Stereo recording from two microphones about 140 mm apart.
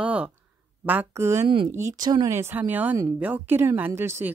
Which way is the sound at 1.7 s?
25° right (ahead or behind).